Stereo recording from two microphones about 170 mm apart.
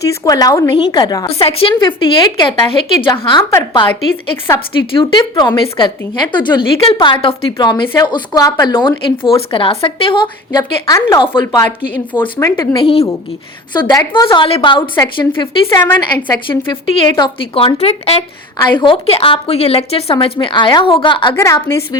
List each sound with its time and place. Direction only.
0.1 s speech: 20° left (ahead or behind)
1.5 s a woman's voice: 35° left (ahead or behind)
18.5 s a woman's voice: 25° left (ahead or behind)
21.3 s a woman's voice: 15° left (ahead or behind)